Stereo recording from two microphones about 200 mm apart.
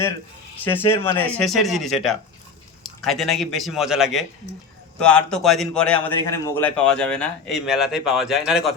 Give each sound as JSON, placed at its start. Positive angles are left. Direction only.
{"t": 0.6, "sound": "a man's voice", "side_deg": 10}